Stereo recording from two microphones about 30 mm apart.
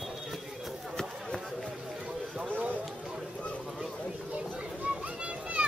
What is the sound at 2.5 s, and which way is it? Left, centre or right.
Run, right.